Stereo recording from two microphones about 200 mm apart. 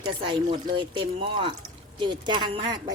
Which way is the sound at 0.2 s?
25° right (ahead or behind).